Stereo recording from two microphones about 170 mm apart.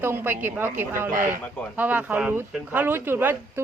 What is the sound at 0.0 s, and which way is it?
Speech, 15° right (ahead or behind).